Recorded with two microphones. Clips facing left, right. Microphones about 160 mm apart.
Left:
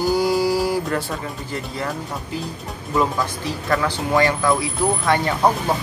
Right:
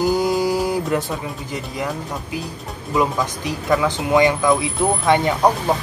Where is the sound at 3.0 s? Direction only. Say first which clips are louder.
Right 1 dB; 15° right (ahead or behind).